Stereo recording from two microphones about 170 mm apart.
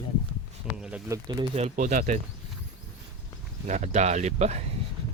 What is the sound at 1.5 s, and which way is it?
Speech, 45° right (ahead or behind).